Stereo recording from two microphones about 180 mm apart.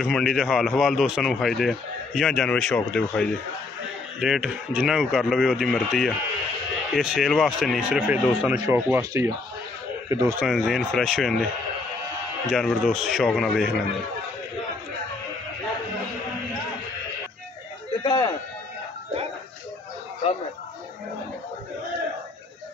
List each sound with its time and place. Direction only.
0.0 s speech: centre (ahead or behind); by 10.3 s 15° right (ahead or behind)
10.4 s speech: centre (ahead or behind)
12.4 s speech: centre (ahead or behind)
18.0 s a sound: 25° left (ahead or behind)